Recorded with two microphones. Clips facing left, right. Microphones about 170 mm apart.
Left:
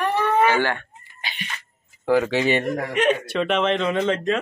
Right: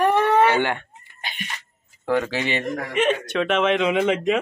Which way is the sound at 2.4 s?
40° left (ahead or behind).